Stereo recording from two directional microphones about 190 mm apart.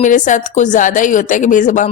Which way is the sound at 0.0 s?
40° left (ahead or behind).